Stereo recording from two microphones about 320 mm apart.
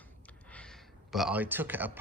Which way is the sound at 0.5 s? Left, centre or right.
Centre.